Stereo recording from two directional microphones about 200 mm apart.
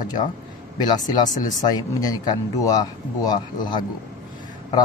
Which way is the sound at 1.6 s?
20° left (ahead or behind).